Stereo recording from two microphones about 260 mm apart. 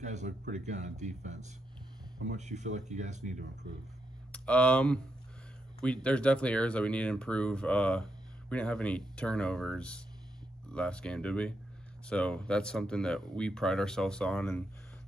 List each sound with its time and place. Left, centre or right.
0.0 s speech: right
4.3 s speech: centre